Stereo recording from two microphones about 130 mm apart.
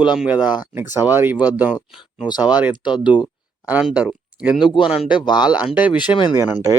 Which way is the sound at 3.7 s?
10° right (ahead or behind).